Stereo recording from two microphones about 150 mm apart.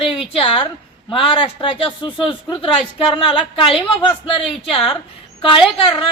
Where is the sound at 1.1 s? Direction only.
35° left (ahead or behind).